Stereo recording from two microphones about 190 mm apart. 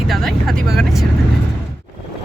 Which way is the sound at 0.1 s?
Centre (ahead or behind).